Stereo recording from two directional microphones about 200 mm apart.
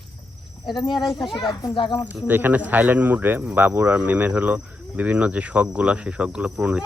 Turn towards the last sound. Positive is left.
turn(degrees=-5)  # may be behind; listen again after turning